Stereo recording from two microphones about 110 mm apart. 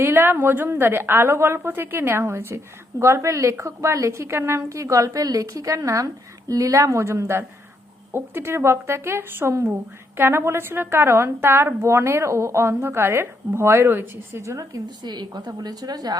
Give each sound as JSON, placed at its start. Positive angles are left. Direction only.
{"t": 0.0, "sound": "a woman's voice", "side_deg": -20}